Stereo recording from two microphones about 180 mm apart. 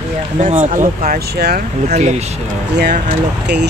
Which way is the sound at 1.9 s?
40° right (ahead or behind).